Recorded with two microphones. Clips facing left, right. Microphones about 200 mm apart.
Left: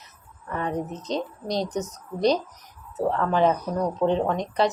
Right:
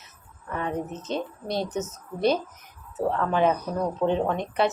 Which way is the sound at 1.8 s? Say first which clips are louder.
Left 1 dB; 15° left (ahead or behind).